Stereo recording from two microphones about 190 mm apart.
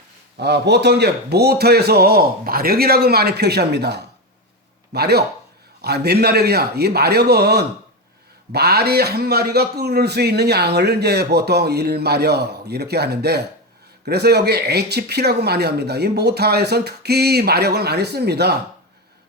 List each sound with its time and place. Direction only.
0.3 s a man's voice: 60° right (ahead or behind)